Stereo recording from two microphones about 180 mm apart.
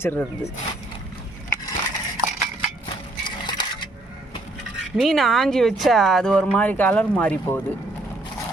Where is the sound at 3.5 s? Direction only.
25° left (ahead or behind).